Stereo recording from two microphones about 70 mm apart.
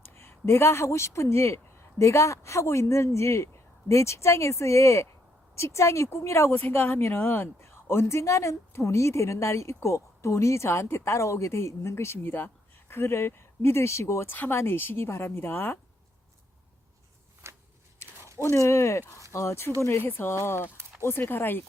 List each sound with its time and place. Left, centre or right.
0.0 s speech: left
17.4 s a sound: right
18.4 s speech: left